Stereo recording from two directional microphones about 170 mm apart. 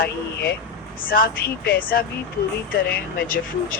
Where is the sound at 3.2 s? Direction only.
55° left (ahead or behind).